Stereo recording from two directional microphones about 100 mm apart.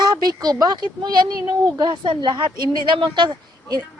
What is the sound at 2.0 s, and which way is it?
Speech, 55° right (ahead or behind).